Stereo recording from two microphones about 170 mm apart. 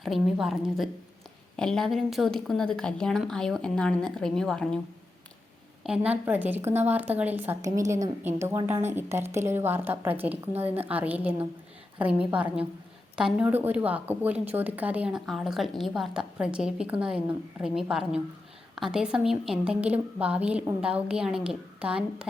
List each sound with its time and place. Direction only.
0.0 s a woman's voice: centre (ahead or behind)
5.8 s a woman's voice: 5° right (ahead or behind)
10.5 s a woman's voice: 35° right (ahead or behind)
10.8 s a woman's voice: 10° right (ahead or behind)